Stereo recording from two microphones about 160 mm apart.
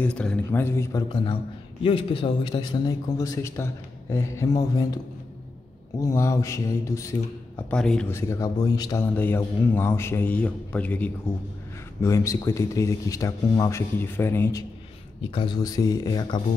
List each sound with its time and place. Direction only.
0.0 s a man's voice: 5° left (ahead or behind)
1.0 s a man's voice: 30° left (ahead or behind)
5.9 s a man's voice: 20° left (ahead or behind)
7.7 s speech: 5° left (ahead or behind)
8.1 s a man's voice: 15° left (ahead or behind)
9.0 s a man's voice: 10° left (ahead or behind)
15.3 s a man's voice: 30° left (ahead or behind)